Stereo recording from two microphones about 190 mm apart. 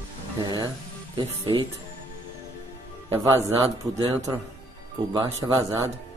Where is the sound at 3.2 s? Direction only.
20° right (ahead or behind).